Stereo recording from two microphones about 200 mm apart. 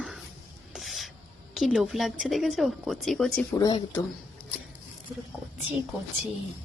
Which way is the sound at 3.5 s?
20° left (ahead or behind).